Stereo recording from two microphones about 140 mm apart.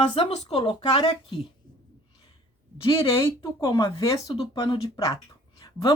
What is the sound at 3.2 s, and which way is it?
Speech, 20° left (ahead or behind).